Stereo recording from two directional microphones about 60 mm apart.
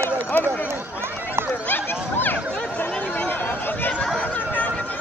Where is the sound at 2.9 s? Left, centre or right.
Left.